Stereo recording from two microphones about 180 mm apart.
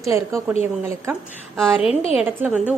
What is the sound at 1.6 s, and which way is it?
A woman's voice, 5° right (ahead or behind).